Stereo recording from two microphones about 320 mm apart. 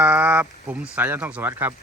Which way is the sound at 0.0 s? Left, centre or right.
Centre.